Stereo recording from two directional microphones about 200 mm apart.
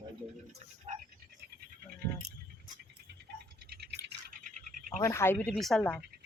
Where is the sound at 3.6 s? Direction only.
50° right (ahead or behind).